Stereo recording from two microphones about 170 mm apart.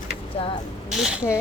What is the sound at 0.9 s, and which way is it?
Speech, 5° right (ahead or behind).